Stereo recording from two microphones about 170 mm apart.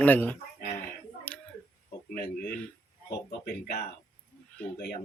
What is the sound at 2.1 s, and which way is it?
Speech, 65° left (ahead or behind).